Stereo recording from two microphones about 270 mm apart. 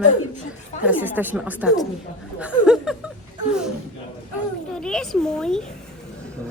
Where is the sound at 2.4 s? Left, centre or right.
Centre.